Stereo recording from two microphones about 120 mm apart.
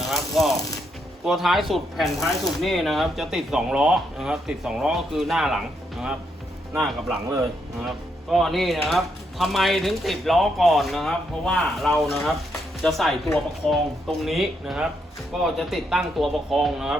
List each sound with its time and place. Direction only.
0.1 s mechanisms: centre (ahead or behind)
1.2 s speech: centre (ahead or behind)
7.9 s speech: centre (ahead or behind)